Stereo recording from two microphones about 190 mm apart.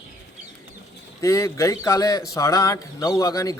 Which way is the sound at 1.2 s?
15° left (ahead or behind).